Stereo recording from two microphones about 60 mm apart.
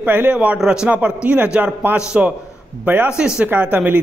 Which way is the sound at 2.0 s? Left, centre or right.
Centre.